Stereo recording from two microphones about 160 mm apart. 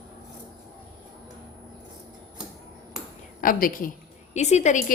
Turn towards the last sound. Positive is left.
turn(degrees=50)  # may be behind; listen again after turning